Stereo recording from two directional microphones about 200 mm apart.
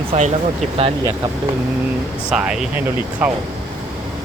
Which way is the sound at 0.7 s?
30° right (ahead or behind).